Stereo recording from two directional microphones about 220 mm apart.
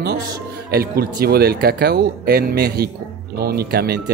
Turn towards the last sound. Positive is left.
turn(degrees=-45)  # may be behind; listen again after turning